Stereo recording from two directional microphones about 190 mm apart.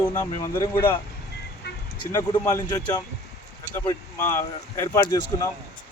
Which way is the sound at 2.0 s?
20° left (ahead or behind).